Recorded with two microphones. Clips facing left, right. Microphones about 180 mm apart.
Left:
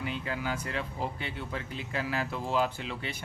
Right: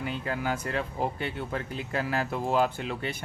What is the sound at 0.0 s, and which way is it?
Speech, 45° right (ahead or behind).